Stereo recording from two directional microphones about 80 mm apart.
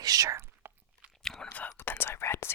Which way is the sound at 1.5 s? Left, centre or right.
Centre.